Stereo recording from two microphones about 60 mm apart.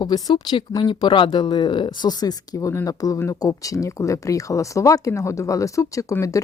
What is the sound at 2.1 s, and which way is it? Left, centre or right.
Speech, left.